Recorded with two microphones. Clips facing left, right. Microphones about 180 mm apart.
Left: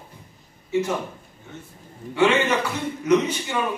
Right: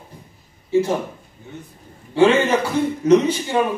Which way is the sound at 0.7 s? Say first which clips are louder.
Right 5 dB; 30° right (ahead or behind).